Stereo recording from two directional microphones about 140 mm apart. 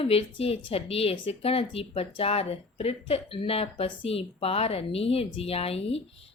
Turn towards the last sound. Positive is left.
turn(degrees=45)  # may be behind; listen again after turning